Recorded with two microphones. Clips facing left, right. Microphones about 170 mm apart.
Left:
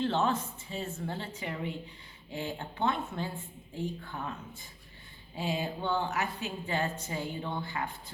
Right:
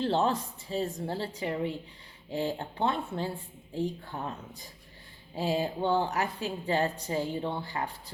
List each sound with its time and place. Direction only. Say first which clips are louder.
0.0 s a woman's voice: right 2 dB; 35° right (ahead or behind)